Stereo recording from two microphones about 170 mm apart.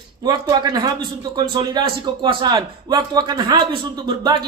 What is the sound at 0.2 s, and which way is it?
A man's voice, 25° right (ahead or behind).